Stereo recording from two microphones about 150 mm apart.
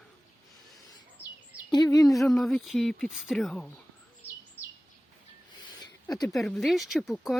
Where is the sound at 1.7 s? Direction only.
25° left (ahead or behind).